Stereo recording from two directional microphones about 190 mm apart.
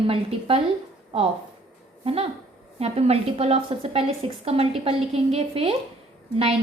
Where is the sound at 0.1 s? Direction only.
30° right (ahead or behind).